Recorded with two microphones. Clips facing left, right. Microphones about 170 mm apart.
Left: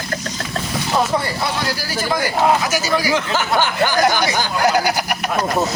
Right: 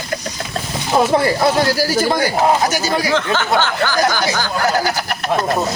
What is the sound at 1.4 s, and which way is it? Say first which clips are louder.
Speech: right 8 dB; 45° right (ahead or behind).